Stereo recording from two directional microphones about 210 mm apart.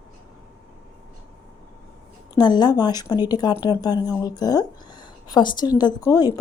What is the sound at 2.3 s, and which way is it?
A woman's voice, 20° left (ahead or behind).